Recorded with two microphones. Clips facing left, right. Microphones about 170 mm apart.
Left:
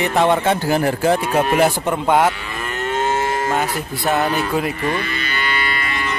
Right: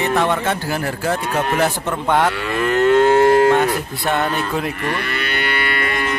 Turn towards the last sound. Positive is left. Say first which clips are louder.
# right 3 dB
turn(degrees=-50)  # may be behind; listen again after turning